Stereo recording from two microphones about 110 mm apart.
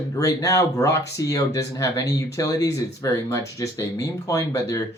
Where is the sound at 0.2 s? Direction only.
30° left (ahead or behind).